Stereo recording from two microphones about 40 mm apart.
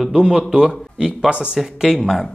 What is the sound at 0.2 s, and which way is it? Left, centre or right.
Speech, centre.